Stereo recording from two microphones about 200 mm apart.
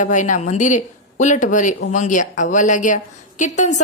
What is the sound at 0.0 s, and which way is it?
A woman's voice, 40° left (ahead or behind).